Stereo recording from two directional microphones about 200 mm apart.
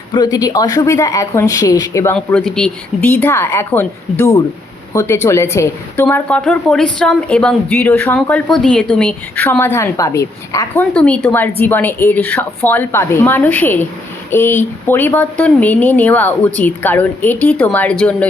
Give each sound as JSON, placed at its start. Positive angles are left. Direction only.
{"t": 0.1, "sound": "a woman's voice", "side_deg": 20}
{"t": 2.1, "sound": "a woman's voice", "side_deg": 5}
{"t": 10.9, "sound": "a woman's voice", "side_deg": 5}